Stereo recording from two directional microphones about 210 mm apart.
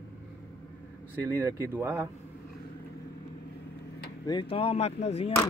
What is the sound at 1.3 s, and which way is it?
Speech, 10° right (ahead or behind).